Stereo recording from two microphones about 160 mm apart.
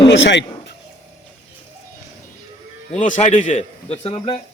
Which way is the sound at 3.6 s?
40° left (ahead or behind).